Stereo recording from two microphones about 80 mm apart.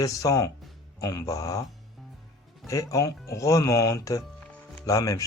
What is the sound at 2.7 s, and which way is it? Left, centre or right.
Speech, left.